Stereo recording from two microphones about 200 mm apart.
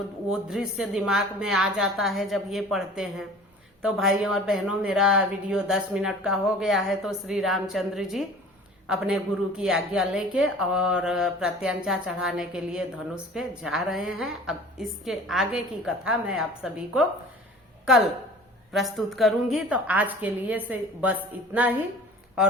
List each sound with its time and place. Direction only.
0.3 s a woman's voice: 5° right (ahead or behind)